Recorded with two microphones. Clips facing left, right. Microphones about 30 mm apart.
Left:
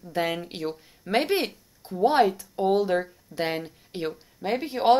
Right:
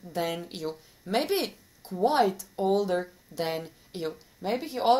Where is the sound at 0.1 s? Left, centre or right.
Left.